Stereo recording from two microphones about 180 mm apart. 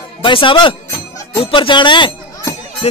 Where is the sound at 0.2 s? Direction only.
30° left (ahead or behind).